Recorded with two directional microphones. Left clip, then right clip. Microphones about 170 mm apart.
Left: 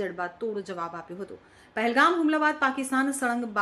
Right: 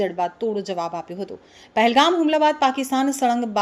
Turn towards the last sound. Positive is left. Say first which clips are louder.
# right 6 dB
turn(degrees=-25)  # may be behind; listen again after turning